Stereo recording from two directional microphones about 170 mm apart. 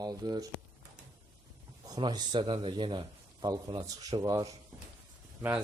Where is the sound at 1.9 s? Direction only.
25° right (ahead or behind).